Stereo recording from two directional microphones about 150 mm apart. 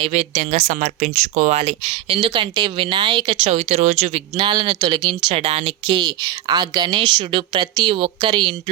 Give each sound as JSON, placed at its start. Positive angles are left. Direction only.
{"t": 0.0, "sound": "speech", "side_deg": -45}
{"t": 4.4, "sound": "speech", "side_deg": -35}